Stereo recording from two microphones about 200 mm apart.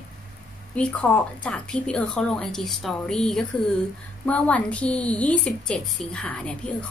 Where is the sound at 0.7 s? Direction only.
5° left (ahead or behind).